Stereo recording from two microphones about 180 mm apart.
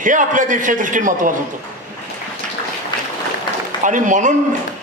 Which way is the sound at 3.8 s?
45° right (ahead or behind).